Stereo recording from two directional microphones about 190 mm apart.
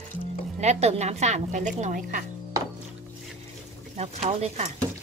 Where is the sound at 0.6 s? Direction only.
35° right (ahead or behind).